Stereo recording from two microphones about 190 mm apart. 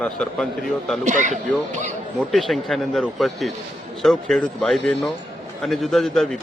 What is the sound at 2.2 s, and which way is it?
A man's voice, centre (ahead or behind).